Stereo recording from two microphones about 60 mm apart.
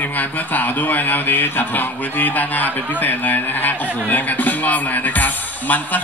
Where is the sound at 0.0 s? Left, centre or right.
Left.